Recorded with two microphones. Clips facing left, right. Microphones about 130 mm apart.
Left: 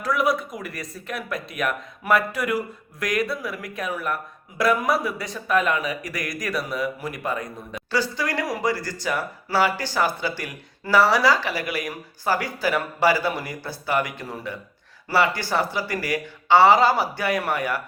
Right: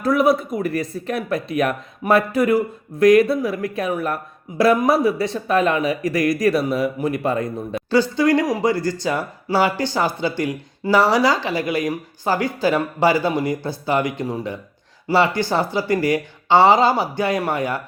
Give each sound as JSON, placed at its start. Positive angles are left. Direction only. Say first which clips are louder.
{"t": 0.1, "sound": "speech", "louder": "right 6 dB", "side_deg": -25}